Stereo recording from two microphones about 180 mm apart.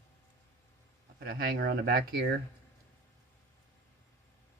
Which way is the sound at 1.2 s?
55° right (ahead or behind).